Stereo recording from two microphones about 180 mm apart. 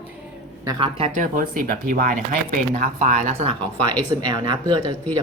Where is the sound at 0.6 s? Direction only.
20° right (ahead or behind).